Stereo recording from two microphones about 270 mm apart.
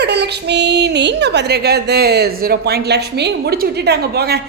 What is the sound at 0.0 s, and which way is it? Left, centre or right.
A woman's voice, right.